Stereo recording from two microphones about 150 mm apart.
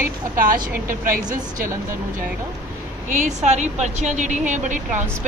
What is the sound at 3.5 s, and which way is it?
A woman's voice, 50° right (ahead or behind).